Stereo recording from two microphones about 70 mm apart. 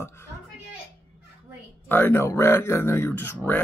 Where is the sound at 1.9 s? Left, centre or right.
Left.